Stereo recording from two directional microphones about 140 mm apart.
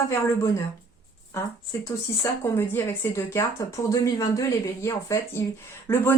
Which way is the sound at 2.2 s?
15° left (ahead or behind).